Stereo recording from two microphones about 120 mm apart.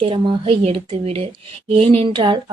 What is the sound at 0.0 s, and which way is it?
Speech, 50° right (ahead or behind).